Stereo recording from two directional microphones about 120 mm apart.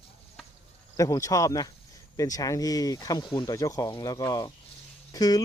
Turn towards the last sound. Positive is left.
turn(degrees=30)  # may be behind; listen again after turning